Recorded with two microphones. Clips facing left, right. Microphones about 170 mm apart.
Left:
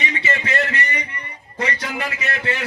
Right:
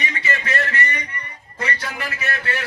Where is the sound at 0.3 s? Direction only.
20° left (ahead or behind).